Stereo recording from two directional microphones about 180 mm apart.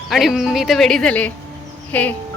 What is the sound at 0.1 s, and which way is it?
Speech, centre (ahead or behind).